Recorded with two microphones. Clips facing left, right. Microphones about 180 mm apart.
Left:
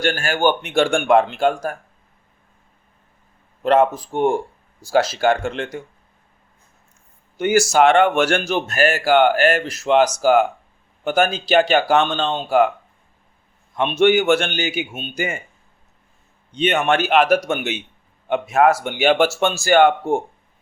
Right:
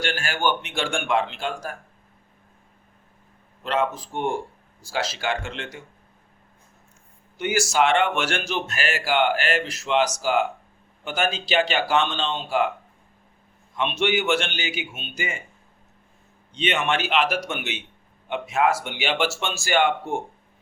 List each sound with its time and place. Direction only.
0.0 s speech: 45° left (ahead or behind)
3.6 s speech: 50° left (ahead or behind)
7.3 s speech: 50° left (ahead or behind)
14.0 s speech: 50° left (ahead or behind)
16.6 s speech: 50° left (ahead or behind)